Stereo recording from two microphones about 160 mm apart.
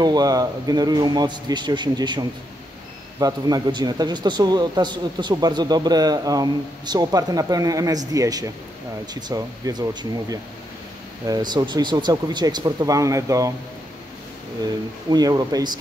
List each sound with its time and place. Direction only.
0.0 s speech: 25° right (ahead or behind)
11.2 s speech: 25° right (ahead or behind)
15.0 s speech: 25° right (ahead or behind)